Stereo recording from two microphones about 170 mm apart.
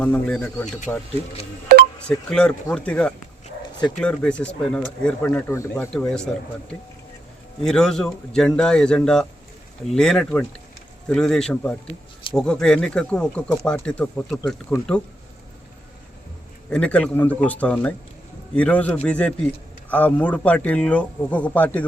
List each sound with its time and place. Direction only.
0.0 s speech: 10° left (ahead or behind)
1.7 s a sound: 65° right (ahead or behind)
2.0 s speech: 5° left (ahead or behind)
7.6 s speech: 5° left (ahead or behind)
16.6 s speech: 5° left (ahead or behind)